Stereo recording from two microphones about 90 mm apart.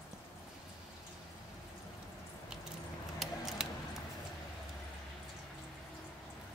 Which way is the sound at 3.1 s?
5° right (ahead or behind).